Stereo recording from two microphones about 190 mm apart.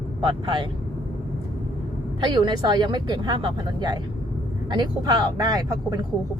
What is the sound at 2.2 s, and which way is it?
Speech, 25° right (ahead or behind).